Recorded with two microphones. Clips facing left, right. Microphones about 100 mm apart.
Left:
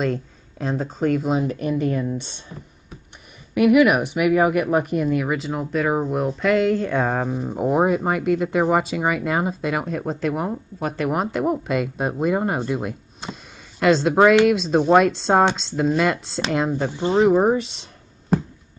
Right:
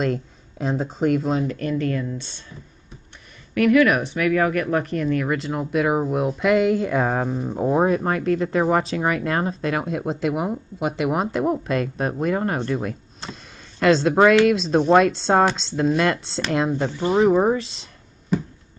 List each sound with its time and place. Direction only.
0.0 s a sound: 5° right (ahead or behind)
1.0 s speech: 10° right (ahead or behind)
1.4 s speech: 15° left (ahead or behind)
3.5 s speech: 15° left (ahead or behind)
9.8 s speech: 5° right (ahead or behind)
11.1 s speech: centre (ahead or behind)
16.7 s speech: 15° left (ahead or behind)